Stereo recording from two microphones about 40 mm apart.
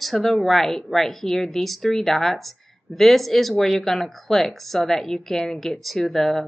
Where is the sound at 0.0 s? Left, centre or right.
Centre.